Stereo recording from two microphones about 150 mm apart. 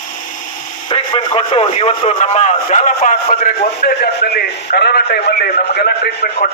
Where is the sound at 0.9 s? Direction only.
35° left (ahead or behind); by 3.3 s 50° left (ahead or behind).